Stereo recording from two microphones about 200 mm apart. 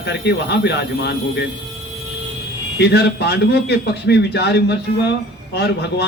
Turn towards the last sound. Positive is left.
turn(degrees=55)  # may be behind; listen again after turning